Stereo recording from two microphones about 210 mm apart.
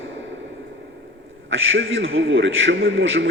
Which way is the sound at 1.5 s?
65° right (ahead or behind).